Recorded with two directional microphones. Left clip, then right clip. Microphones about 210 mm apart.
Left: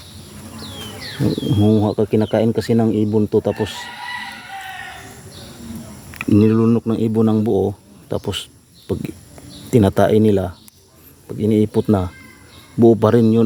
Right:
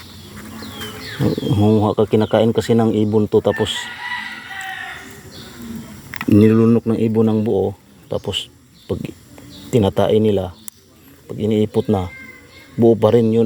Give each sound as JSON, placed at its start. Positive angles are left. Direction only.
{"t": 1.4, "sound": "speech", "side_deg": 10}
{"t": 6.2, "sound": "speech", "side_deg": 5}
{"t": 9.6, "sound": "speech", "side_deg": 30}